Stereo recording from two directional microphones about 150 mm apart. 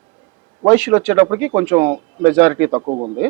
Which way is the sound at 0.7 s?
15° right (ahead or behind).